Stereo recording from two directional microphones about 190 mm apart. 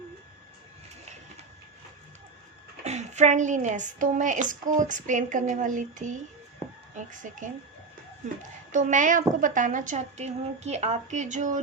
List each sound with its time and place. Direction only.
2.8 s a woman's voice: 35° right (ahead or behind)